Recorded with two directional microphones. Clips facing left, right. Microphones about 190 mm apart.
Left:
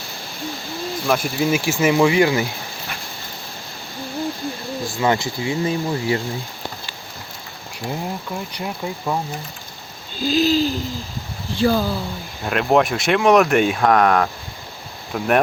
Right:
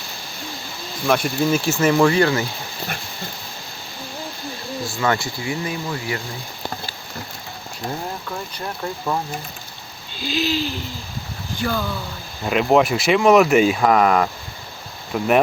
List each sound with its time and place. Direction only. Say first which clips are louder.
1.0 s speech: right 2 dB; centre (ahead or behind)
1.5 s speech: even; 15° left (ahead or behind)
4.9 s speech: left 2 dB; 15° left (ahead or behind)
5.6 s speech: left 5 dB; 30° left (ahead or behind)
8.5 s speech: left 1 dB; 10° left (ahead or behind)
10.2 s speech: left 6 dB; 40° left (ahead or behind)
12.5 s speech: right 1 dB; centre (ahead or behind)